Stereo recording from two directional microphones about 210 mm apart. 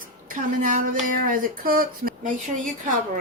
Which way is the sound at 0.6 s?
40° right (ahead or behind).